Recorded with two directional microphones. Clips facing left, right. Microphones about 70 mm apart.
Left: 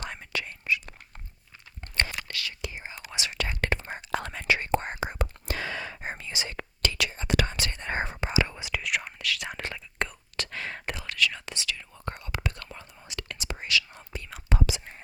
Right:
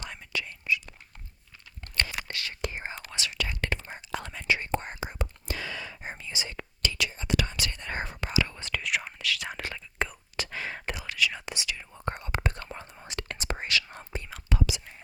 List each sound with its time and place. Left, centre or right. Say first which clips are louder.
0.0 s whispering: left 1 dB; left
2.2 s whispering: left 1 dB; right
2.6 s whispering: right 3 dB; right
3.3 s whispering: left 3 dB; left
8.5 s whispering: even; centre; by 14.2 s right
14.5 s whispering: left 1 dB; left